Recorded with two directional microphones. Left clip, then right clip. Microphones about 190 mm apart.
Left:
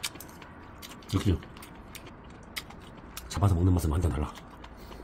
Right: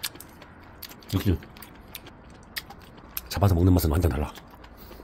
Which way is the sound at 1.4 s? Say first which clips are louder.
Even; 35° right (ahead or behind).